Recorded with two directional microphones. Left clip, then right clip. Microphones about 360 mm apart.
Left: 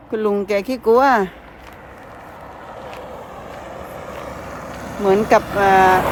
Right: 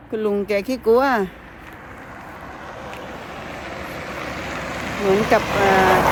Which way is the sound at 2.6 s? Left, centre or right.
Centre.